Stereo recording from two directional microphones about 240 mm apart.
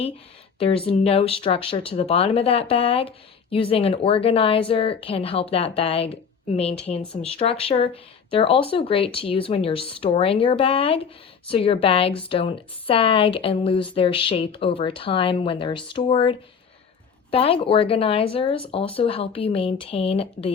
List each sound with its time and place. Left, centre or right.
0.6 s speech: left